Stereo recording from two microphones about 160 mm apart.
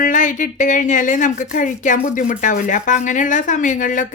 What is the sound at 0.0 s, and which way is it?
Speech, 55° left (ahead or behind).